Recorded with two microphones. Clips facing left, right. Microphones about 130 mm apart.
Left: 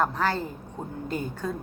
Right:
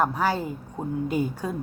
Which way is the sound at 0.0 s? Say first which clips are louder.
Right 2 dB; 10° right (ahead or behind).